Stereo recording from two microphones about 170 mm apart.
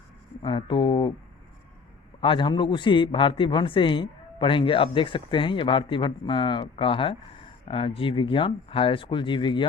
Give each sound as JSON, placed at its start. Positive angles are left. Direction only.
{"t": 0.4, "sound": "a man's voice", "side_deg": 30}
{"t": 2.2, "sound": "a man's voice", "side_deg": 30}